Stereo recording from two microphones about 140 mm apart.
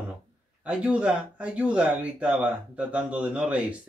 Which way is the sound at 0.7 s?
5° right (ahead or behind).